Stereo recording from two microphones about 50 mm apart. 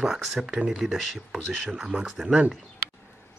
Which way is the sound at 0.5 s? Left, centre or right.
Right.